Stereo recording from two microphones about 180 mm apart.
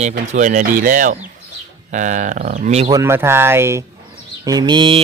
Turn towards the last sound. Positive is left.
turn(degrees=-25)  # may be behind; listen again after turning